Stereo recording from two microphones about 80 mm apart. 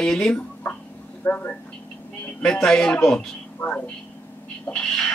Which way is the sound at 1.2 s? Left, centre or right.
Left.